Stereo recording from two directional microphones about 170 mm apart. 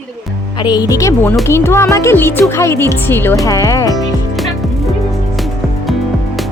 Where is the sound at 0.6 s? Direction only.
25° left (ahead or behind).